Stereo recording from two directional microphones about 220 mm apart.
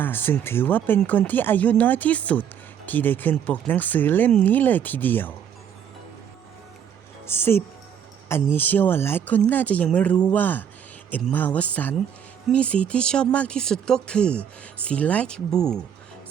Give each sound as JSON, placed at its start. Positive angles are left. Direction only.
{"t": 0.0, "sound": "speech", "side_deg": 10}
{"t": 7.3, "sound": "speech", "side_deg": 10}